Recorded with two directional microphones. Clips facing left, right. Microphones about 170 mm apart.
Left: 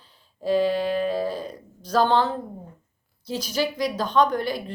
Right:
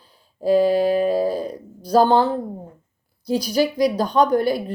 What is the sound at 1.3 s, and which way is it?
Speech, 10° right (ahead or behind).